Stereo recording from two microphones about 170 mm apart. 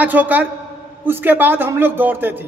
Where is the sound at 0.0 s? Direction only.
10° right (ahead or behind).